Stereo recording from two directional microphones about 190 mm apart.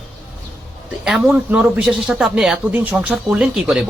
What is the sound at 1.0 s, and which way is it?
Speech, 5° right (ahead or behind).